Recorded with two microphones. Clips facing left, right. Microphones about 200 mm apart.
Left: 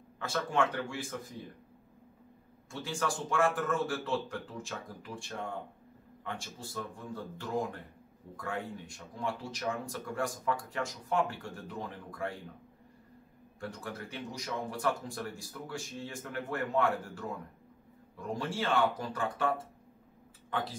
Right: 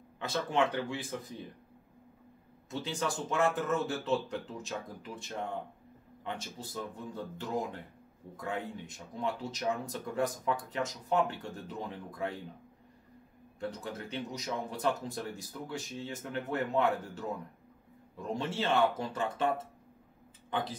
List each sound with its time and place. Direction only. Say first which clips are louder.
0.2 s speech: right 1 dB; 20° right (ahead or behind)
2.7 s speech: even; 20° right (ahead or behind)
13.6 s speech: right 2 dB; 20° right (ahead or behind)